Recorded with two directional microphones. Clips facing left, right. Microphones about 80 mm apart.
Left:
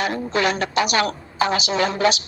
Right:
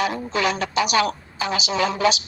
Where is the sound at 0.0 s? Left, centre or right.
Left.